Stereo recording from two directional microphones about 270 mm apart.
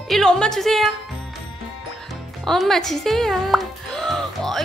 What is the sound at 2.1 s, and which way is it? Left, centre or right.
Music, centre.